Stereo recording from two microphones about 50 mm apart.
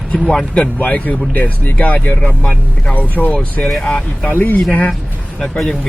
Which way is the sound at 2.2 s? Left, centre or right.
Centre.